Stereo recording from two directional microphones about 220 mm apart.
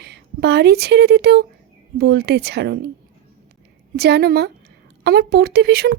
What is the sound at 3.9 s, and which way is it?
Speech, 50° right (ahead or behind).